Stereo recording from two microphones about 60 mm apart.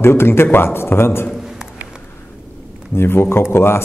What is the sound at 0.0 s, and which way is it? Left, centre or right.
Speech, left.